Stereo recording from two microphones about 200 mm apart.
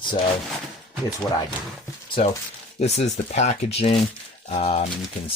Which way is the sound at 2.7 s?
30° left (ahead or behind).